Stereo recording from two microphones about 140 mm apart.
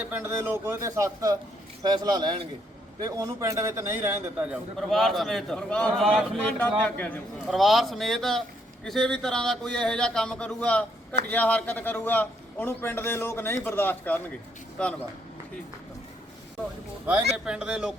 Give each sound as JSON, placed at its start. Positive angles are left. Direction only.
{"t": 0.0, "sound": "a man's voice", "side_deg": -15}
{"t": 4.8, "sound": "a man's voice", "side_deg": 0}
{"t": 7.4, "sound": "a man's voice", "side_deg": 0}
{"t": 17.1, "sound": "speech", "side_deg": -10}